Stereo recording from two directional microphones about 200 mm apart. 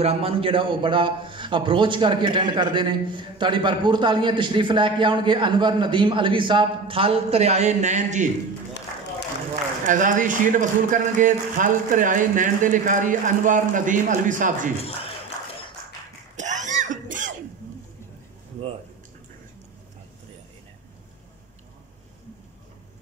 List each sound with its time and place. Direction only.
0.0 s a man's voice: 30° right (ahead or behind)
9.8 s speech: 40° right (ahead or behind)
16.3 s throat clearing: 40° right (ahead or behind)